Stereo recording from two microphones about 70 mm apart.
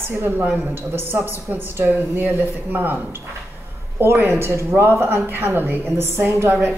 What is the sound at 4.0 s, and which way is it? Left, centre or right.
A woman's voice, right.